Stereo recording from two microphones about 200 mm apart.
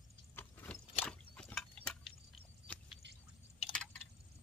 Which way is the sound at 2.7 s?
5° left (ahead or behind).